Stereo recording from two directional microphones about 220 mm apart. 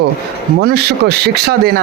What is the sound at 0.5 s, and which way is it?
Speech, 50° right (ahead or behind).